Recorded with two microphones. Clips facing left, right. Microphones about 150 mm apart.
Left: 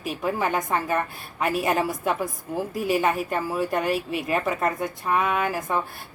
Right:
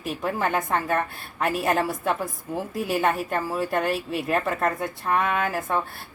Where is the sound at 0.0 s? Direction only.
Centre (ahead or behind).